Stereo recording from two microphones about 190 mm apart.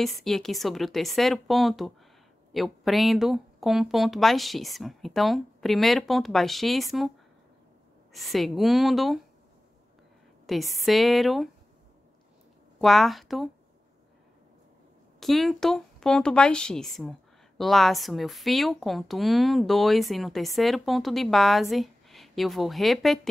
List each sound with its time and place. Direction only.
0.0 s speech: centre (ahead or behind)
8.1 s speech: centre (ahead or behind)
10.4 s speech: centre (ahead or behind)
12.8 s speech: centre (ahead or behind)
15.1 s speech: centre (ahead or behind)